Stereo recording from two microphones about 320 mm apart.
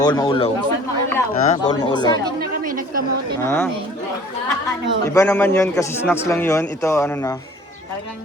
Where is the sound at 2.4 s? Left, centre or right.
Right.